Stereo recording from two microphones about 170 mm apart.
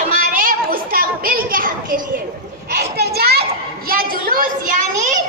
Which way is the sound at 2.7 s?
70° right (ahead or behind).